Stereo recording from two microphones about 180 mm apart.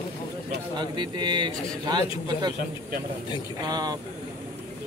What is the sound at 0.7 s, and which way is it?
A man's voice, 25° right (ahead or behind).